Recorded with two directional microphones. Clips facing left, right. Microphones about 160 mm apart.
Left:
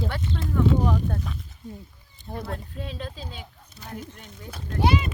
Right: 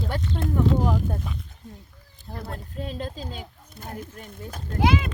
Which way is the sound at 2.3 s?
Centre (ahead or behind).